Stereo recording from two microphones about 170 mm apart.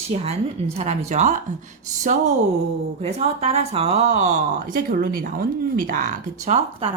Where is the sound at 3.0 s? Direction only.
35° right (ahead or behind).